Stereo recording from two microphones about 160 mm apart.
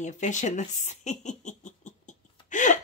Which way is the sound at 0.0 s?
50° left (ahead or behind).